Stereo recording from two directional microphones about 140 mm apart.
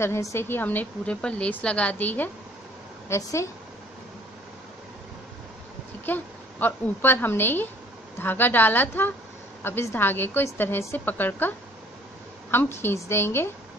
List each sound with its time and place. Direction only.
0.0 s a woman's voice: 20° left (ahead or behind)
3.1 s speech: 20° left (ahead or behind)
6.0 s a woman's voice: 15° left (ahead or behind)